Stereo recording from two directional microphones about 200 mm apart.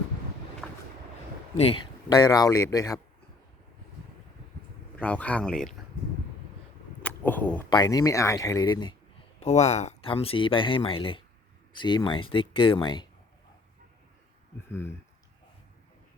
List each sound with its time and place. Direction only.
0.6 s vehicle: centre (ahead or behind)
1.5 s speech: 30° left (ahead or behind)
4.9 s speech: 5° left (ahead or behind)
7.0 s a sound: 5° left (ahead or behind)
7.7 s speech: 20° left (ahead or behind)
9.4 s speech: 35° left (ahead or behind)
14.7 s speech: 10° left (ahead or behind)